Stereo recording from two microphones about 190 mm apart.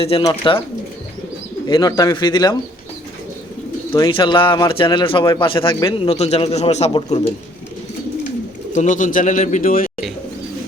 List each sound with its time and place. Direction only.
0.0 s a man's voice: 30° left (ahead or behind)
1.6 s a man's voice: 20° left (ahead or behind)
3.9 s a man's voice: 20° left (ahead or behind)
8.7 s speech: 40° left (ahead or behind)